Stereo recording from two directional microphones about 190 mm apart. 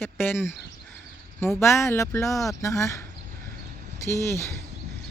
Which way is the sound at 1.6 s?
15° left (ahead or behind).